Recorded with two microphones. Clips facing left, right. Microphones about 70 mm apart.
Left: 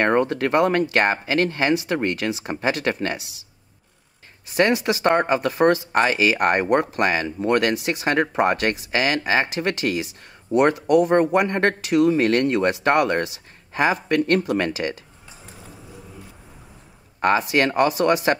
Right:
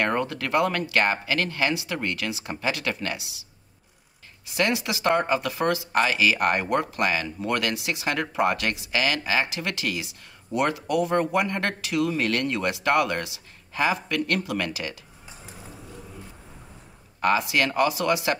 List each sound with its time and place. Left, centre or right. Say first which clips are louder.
0.0 s speech: left 6 dB; left
4.5 s speech: left 6 dB; left
15.2 s a sound: right 1 dB; centre
17.2 s speech: left 4 dB; left